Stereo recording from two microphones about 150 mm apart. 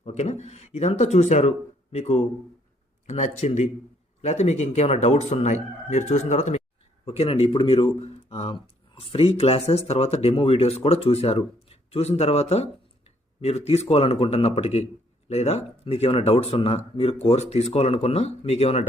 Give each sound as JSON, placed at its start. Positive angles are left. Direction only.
{"t": 0.0, "sound": "speech", "side_deg": 45}